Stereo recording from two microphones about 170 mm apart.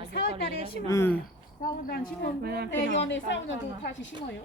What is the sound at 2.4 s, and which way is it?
Speech, 70° right (ahead or behind).